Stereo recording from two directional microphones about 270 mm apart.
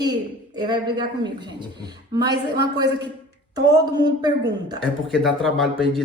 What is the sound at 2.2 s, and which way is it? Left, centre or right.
A woman's voice, centre.